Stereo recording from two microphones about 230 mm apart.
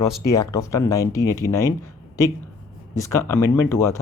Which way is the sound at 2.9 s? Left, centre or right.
Centre.